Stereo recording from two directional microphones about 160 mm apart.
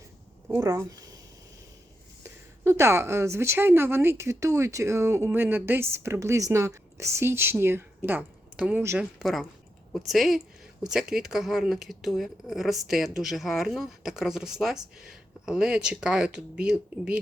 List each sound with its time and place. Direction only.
0.4 s a sound: 10° right (ahead or behind)
2.2 s a woman's voice: 15° right (ahead or behind)
9.1 s speech: centre (ahead or behind)